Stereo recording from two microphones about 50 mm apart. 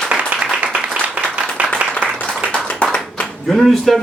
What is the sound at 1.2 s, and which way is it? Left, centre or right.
Applause, right.